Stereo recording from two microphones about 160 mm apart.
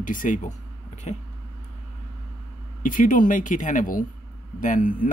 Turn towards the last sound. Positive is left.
turn(degrees=55)  # may be behind; listen again after turning